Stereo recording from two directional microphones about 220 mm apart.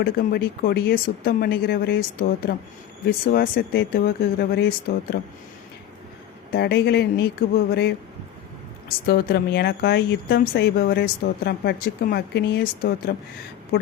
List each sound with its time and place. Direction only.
0.0 s speech: 45° left (ahead or behind)
6.5 s speech: 50° left (ahead or behind)
9.0 s speech: 45° left (ahead or behind)